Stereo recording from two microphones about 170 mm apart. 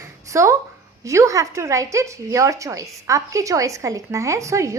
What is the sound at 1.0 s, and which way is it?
A woman's voice, 20° right (ahead or behind).